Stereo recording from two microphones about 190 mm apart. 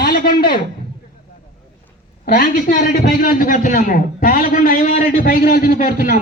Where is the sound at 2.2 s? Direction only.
55° left (ahead or behind).